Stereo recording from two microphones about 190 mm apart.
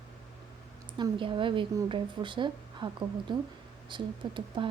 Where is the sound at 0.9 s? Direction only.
25° right (ahead or behind).